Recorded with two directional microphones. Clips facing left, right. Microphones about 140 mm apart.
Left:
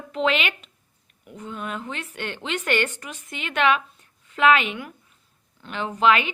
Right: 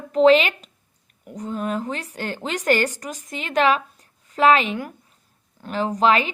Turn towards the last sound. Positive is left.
turn(degrees=-35)  # may be behind; listen again after turning